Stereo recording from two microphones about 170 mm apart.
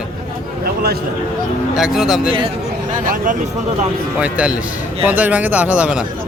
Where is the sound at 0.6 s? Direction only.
65° right (ahead or behind).